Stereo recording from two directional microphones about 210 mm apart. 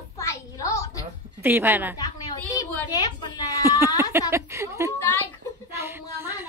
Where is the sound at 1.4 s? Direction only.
10° right (ahead or behind).